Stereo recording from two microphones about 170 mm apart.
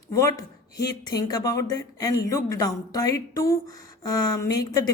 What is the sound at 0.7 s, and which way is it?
A woman's voice, 20° left (ahead or behind).